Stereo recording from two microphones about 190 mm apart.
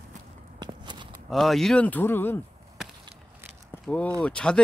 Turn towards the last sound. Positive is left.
turn(degrees=5)  # may be behind; listen again after turning